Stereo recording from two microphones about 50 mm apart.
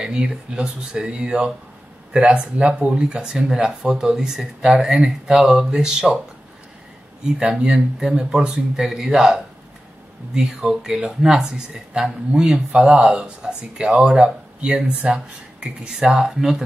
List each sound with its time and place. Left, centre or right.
0.0 s speech: centre
7.3 s speech: centre